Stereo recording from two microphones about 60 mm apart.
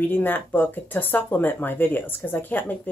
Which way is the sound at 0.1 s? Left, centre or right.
Left.